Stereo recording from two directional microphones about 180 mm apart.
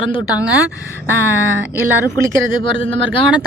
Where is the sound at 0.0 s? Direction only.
25° left (ahead or behind).